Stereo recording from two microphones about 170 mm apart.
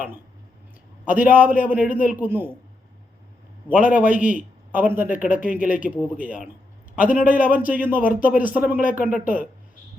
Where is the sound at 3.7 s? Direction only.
10° right (ahead or behind).